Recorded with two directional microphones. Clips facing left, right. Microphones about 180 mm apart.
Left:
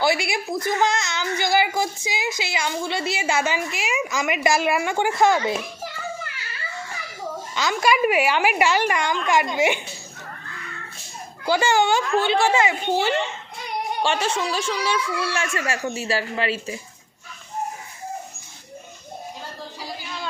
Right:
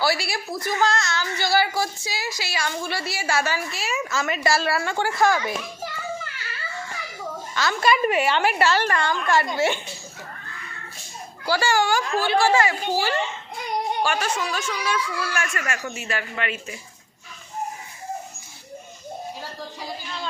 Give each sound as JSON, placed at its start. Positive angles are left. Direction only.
{"t": 0.0, "sound": "a woman's voice", "side_deg": 20}
{"t": 7.5, "sound": "a woman's voice", "side_deg": 15}
{"t": 11.4, "sound": "a woman's voice", "side_deg": 20}